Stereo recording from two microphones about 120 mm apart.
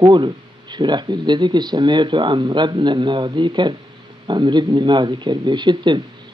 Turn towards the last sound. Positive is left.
turn(degrees=-40)  # may be behind; listen again after turning